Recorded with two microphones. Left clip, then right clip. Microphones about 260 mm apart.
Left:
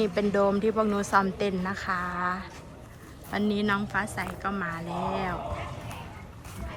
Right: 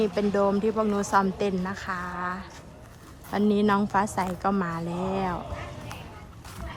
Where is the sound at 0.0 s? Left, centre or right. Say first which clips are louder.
Right 1 dB; centre.